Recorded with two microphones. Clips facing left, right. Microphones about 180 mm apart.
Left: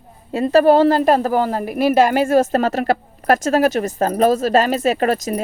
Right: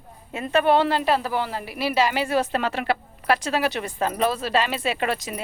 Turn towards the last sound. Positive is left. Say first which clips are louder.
# left 8 dB
turn(degrees=45)  # may be behind; listen again after turning